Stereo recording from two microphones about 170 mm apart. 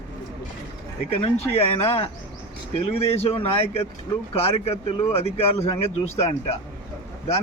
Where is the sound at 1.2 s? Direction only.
35° left (ahead or behind).